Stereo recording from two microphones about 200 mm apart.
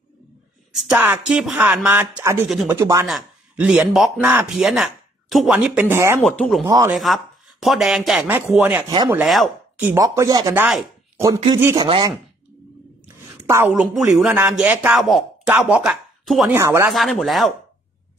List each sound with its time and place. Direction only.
0.7 s speech: centre (ahead or behind)
2.8 s speech: 15° right (ahead or behind)
3.1 s a man's voice: 5° right (ahead or behind)
6.2 s speech: centre (ahead or behind)
6.6 s speech: 15° right (ahead or behind)
6.9 s speech: centre (ahead or behind); by 12.1 s 20° right (ahead or behind)
13.5 s speech: 10° right (ahead or behind)
16.9 s speech: centre (ahead or behind)